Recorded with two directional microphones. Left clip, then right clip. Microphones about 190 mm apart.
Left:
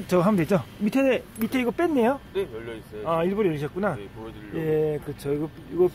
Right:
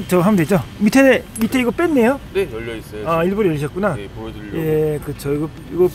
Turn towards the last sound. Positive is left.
turn(degrees=5)  # may be behind; listen again after turning